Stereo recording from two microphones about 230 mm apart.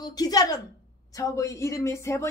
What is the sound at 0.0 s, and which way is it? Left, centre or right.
A woman's voice, centre.